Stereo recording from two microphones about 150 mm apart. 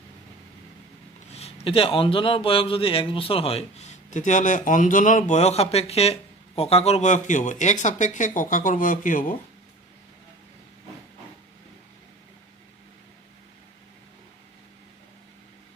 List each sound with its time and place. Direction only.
1.3 s a man's voice: 40° left (ahead or behind); by 5.2 s 60° left (ahead or behind)
5.3 s speech: 45° left (ahead or behind); by 9.4 s 60° left (ahead or behind)